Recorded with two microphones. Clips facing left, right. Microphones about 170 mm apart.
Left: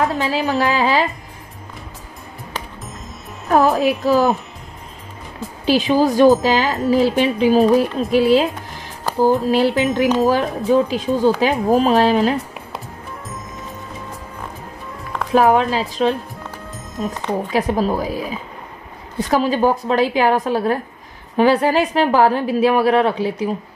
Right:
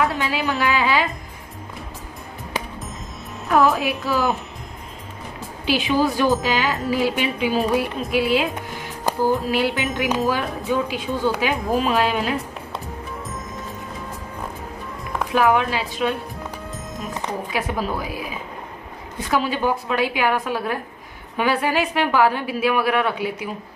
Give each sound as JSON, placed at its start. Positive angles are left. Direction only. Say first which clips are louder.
{"t": 0.0, "sound": "speech", "louder": "left 3 dB", "side_deg": 35}
{"t": 3.4, "sound": "speech", "louder": "left 3 dB", "side_deg": 40}
{"t": 5.7, "sound": "speech", "louder": "left 5 dB", "side_deg": 40}
{"t": 9.5, "sound": "speech", "louder": "left 6 dB", "side_deg": 40}
{"t": 15.3, "sound": "speech", "louder": "left 5 dB", "side_deg": 35}
{"t": 17.3, "sound": "speech", "louder": "left 8 dB", "side_deg": 40}